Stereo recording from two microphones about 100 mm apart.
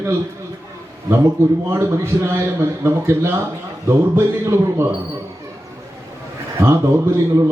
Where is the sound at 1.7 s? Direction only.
25° right (ahead or behind).